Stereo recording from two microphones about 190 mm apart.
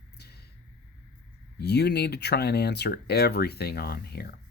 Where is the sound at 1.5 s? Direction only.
60° left (ahead or behind).